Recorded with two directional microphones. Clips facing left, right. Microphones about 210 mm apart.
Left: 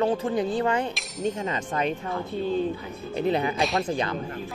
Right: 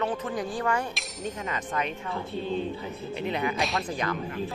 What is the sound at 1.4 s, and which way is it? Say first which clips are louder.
Speech: left 3 dB; 30° left (ahead or behind).